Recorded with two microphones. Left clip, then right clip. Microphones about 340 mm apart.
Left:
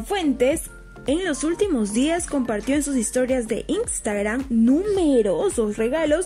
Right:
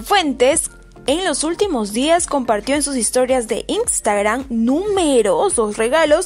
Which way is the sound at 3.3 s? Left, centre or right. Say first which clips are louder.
Right 5 dB; right.